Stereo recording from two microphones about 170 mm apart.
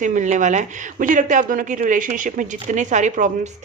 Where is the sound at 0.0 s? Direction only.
45° right (ahead or behind).